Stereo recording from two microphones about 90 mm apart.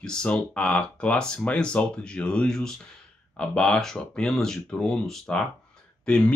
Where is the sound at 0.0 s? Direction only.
10° left (ahead or behind).